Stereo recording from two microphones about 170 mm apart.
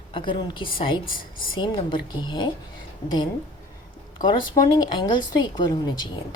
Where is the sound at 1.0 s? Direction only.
55° left (ahead or behind).